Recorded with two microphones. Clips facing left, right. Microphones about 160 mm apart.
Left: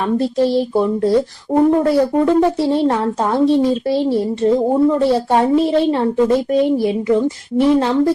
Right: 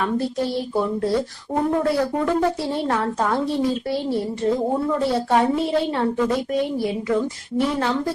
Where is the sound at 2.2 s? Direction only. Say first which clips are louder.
Left 7 dB; 25° left (ahead or behind).